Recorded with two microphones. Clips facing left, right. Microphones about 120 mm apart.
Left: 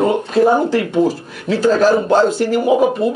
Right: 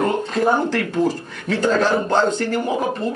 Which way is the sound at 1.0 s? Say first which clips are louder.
Left 4 dB; 5° left (ahead or behind).